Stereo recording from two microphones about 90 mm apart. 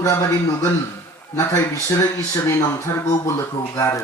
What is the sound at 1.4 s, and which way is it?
A man's voice, 35° left (ahead or behind).